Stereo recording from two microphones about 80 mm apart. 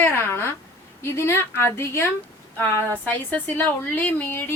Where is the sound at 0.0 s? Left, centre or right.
Left.